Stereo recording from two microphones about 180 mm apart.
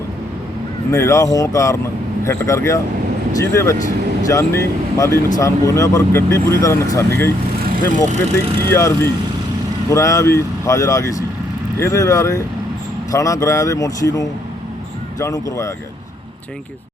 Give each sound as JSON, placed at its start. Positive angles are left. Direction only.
{"t": 0.9, "sound": "speech", "side_deg": 15}
{"t": 8.1, "sound": "speech", "side_deg": -35}
{"t": 8.7, "sound": "speech", "side_deg": 15}